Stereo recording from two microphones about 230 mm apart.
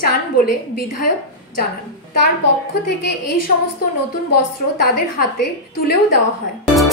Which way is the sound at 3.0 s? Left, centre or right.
Left.